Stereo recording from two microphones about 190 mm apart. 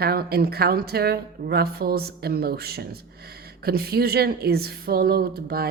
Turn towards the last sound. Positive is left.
turn(degrees=-55)  # may be behind; listen again after turning